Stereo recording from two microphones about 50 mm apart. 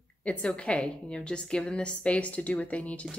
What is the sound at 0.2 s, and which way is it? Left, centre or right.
A woman's voice, left.